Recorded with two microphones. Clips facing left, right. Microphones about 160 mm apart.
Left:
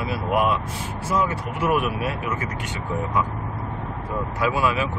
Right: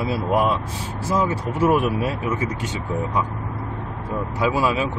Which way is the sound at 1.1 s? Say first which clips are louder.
Right 2 dB; 30° right (ahead or behind).